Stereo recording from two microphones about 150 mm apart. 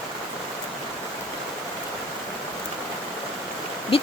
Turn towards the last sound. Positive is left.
turn(degrees=40)  # may be behind; listen again after turning